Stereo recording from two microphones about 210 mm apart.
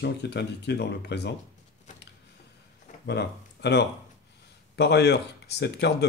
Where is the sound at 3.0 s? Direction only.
55° left (ahead or behind).